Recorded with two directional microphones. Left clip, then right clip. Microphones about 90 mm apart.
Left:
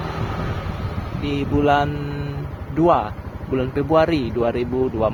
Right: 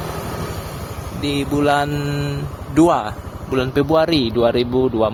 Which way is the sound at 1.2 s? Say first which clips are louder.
Right 2 dB; 30° right (ahead or behind).